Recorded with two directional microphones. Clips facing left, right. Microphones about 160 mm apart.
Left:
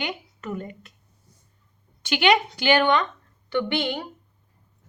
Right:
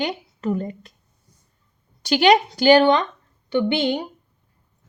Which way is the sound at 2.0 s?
40° right (ahead or behind).